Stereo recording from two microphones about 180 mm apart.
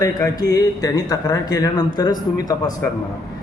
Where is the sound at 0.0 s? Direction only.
20° left (ahead or behind).